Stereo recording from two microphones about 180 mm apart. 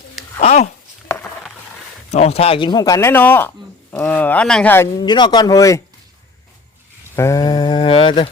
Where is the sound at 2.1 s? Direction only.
35° left (ahead or behind); by 5.0 s 10° left (ahead or behind).